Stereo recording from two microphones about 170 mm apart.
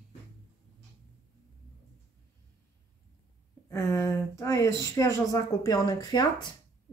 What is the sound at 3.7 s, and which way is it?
Speech, 15° left (ahead or behind).